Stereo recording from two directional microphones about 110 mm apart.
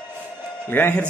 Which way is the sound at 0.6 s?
20° left (ahead or behind).